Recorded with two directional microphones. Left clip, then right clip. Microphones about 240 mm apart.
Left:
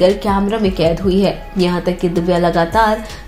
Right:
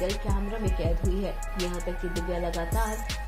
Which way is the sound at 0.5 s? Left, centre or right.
Left.